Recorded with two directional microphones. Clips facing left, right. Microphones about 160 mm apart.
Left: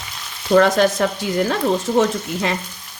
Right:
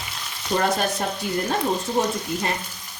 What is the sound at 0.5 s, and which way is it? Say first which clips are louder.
Speech: left 9 dB; 90° left.